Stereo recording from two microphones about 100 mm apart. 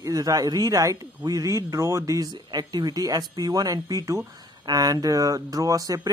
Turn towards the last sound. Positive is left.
turn(degrees=-35)  # may be behind; listen again after turning